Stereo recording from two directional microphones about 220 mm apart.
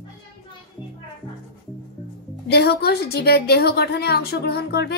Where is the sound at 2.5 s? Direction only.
50° left (ahead or behind).